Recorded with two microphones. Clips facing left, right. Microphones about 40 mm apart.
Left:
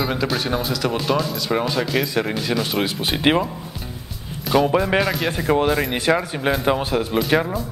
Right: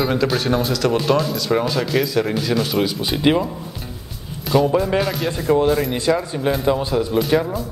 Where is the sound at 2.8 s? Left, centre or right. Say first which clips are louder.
Right 1 dB; left.